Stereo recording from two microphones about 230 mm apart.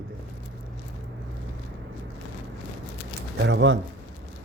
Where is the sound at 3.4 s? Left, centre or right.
Right.